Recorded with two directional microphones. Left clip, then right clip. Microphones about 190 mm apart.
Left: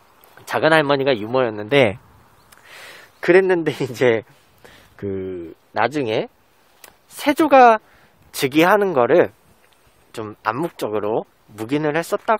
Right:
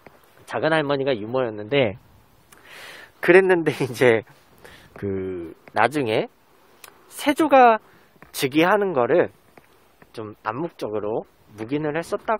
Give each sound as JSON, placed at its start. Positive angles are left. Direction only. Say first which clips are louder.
{"t": 0.5, "sound": "speech", "louder": "left 6 dB", "side_deg": 15}
{"t": 2.5, "sound": "speech", "louder": "left 1 dB", "side_deg": -5}